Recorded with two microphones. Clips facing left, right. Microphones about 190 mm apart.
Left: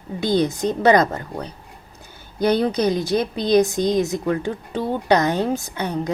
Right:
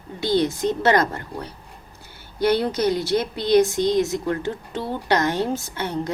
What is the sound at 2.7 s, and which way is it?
Speech, 15° left (ahead or behind).